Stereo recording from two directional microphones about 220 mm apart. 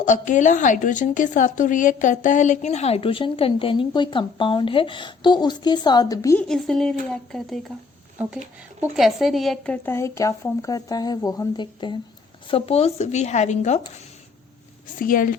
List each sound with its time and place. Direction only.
0.0 s a woman's voice: 35° left (ahead or behind); by 6.4 s 15° left (ahead or behind)
6.4 s speech: centre (ahead or behind)
8.8 s a woman's voice: centre (ahead or behind); by 13.8 s 30° left (ahead or behind)
14.9 s speech: 40° left (ahead or behind)